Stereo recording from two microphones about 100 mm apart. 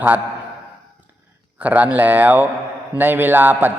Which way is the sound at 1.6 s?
15° right (ahead or behind).